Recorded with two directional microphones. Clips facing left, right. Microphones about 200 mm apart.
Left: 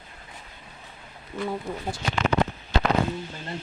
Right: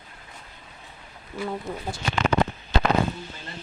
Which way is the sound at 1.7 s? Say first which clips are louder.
Even; 5° right (ahead or behind).